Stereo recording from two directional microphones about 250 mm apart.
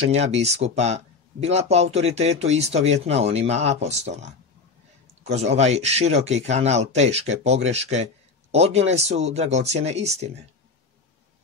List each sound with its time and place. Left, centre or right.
0.0 s speech: right